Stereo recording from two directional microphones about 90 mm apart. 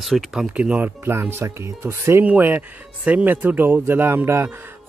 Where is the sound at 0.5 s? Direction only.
15° right (ahead or behind).